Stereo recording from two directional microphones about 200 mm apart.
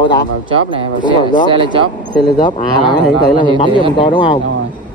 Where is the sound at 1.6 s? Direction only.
25° right (ahead or behind).